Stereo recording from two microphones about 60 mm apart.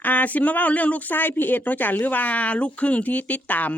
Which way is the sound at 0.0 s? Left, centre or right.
Left.